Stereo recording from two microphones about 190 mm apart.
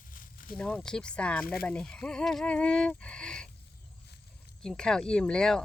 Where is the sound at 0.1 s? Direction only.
45° left (ahead or behind).